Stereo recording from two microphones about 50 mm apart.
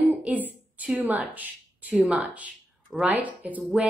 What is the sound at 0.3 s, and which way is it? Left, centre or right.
A woman's voice, right.